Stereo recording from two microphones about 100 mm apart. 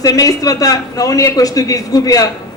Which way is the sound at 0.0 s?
35° left (ahead or behind).